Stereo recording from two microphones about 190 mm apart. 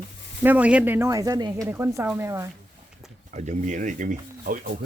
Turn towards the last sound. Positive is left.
turn(degrees=-45)  # may be behind; listen again after turning